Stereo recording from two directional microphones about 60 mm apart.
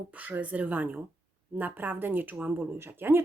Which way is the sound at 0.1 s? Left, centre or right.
Right.